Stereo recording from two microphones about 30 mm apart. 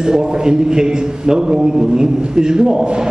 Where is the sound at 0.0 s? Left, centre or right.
Right.